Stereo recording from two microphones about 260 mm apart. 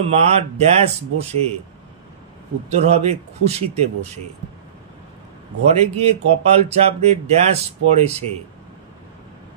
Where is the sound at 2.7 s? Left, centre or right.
Right.